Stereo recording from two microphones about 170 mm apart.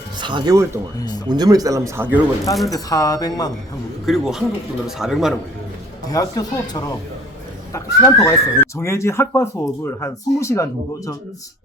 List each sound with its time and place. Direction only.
0.2 s speech: 30° right (ahead or behind)
0.9 s speech: 25° left (ahead or behind)
1.3 s speech: 25° right (ahead or behind)
2.6 s speech: 20° left (ahead or behind)
4.0 s a man's voice: centre (ahead or behind)
6.1 s speech: 20° left (ahead or behind)